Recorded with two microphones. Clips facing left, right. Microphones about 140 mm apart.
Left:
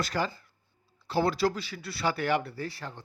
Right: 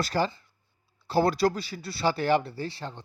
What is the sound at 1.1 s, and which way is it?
Speech, 40° right (ahead or behind).